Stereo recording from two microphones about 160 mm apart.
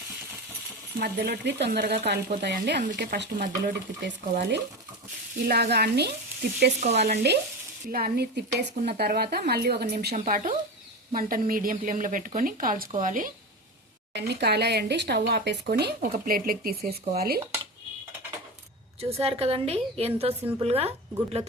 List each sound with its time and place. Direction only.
0.9 s speech: 80° right
7.9 s a woman's voice: 70° right (ahead or behind); by 10.2 s 85° right
10.2 s speech: 60° right (ahead or behind)
14.1 s speech: 90° right; by 17.4 s 75° right (ahead or behind)
18.9 s a woman's voice: 40° right (ahead or behind)